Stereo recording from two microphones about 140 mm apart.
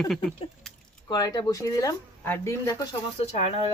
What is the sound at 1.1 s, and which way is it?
Speech, 30° left (ahead or behind).